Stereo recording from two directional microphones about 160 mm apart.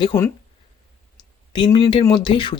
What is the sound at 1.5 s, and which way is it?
Speech, 30° left (ahead or behind).